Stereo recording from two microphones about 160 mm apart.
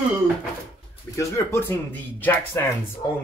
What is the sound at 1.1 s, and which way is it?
Speech, 20° left (ahead or behind).